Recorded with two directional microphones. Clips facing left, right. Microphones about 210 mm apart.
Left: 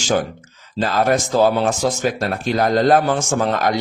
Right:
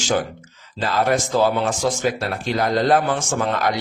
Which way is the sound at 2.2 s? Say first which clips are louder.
Left 3 dB; 45° left (ahead or behind).